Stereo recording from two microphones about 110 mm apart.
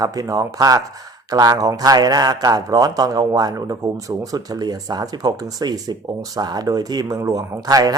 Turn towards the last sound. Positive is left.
turn(degrees=-35)  # may be behind; listen again after turning